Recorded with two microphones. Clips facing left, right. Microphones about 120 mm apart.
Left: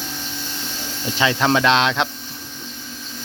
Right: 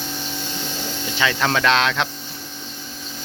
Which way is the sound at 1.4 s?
20° left (ahead or behind).